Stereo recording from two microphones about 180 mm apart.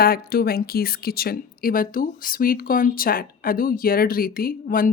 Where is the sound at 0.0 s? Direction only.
55° left (ahead or behind).